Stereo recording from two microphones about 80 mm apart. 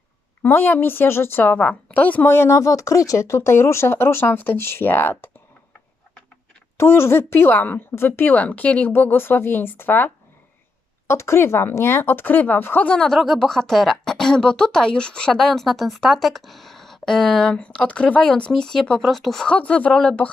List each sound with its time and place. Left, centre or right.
0.4 s speech: left
2.3 s speech: left
6.7 s speech: left
11.1 s speech: left; by 19.5 s centre
19.5 s speech: centre